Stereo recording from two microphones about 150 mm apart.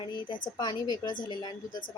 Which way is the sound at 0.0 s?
30° left (ahead or behind).